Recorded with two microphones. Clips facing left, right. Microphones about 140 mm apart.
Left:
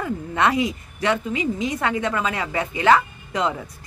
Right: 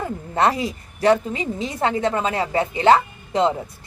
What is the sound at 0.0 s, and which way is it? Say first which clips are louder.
A woman's voice: right 1 dB; 35° right (ahead or behind).